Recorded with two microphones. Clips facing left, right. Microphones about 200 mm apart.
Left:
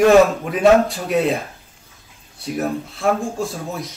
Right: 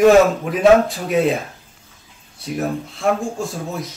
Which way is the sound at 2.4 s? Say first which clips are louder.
Even; centre (ahead or behind).